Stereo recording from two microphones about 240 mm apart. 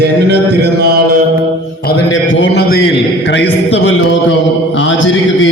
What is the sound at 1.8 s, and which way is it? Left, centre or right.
A man's voice, left.